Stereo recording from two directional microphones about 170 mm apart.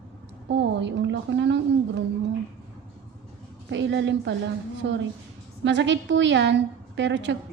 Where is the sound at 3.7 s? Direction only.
90° right.